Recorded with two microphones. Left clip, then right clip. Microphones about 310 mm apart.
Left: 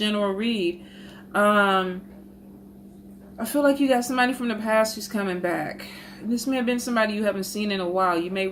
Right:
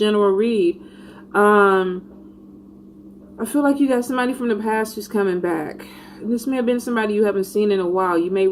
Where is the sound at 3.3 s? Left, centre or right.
Left.